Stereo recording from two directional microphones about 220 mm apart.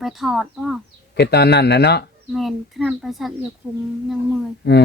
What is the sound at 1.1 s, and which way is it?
Speech, 50° left (ahead or behind).